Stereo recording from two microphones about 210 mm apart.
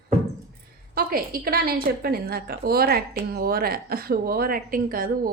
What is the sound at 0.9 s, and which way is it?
Speech, 45° right (ahead or behind).